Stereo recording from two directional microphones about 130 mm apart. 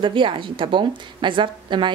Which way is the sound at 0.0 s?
40° right (ahead or behind).